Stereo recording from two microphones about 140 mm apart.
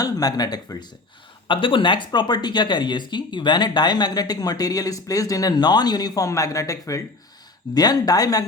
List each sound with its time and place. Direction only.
0.0 s speech: 25° left (ahead or behind)